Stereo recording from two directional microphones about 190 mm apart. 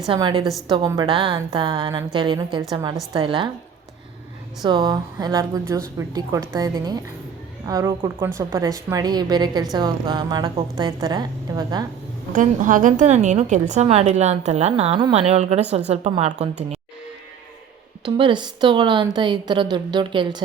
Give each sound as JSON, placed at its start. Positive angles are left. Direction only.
{"t": 0.1, "sound": "a woman's voice", "side_deg": -25}
{"t": 4.6, "sound": "a woman's voice", "side_deg": -25}
{"t": 12.3, "sound": "a woman's voice", "side_deg": -45}
{"t": 18.0, "sound": "a woman's voice", "side_deg": -25}